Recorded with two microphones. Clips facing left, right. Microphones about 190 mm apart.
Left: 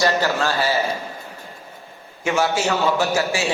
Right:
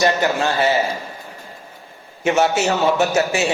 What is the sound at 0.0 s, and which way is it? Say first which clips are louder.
Speech: right 2 dB; 20° right (ahead or behind).